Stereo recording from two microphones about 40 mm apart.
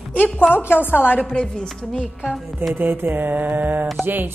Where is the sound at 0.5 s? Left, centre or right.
Left.